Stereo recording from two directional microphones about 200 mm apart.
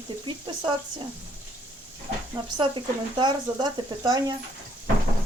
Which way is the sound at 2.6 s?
25° right (ahead or behind).